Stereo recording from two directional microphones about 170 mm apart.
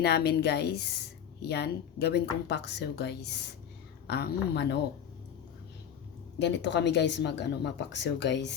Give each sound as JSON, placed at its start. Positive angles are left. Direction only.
{"t": 0.0, "sound": "a woman's voice", "side_deg": 70}
{"t": 6.4, "sound": "speech", "side_deg": 90}